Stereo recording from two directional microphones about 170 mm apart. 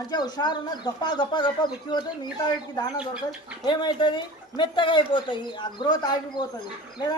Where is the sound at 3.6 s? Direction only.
30° left (ahead or behind).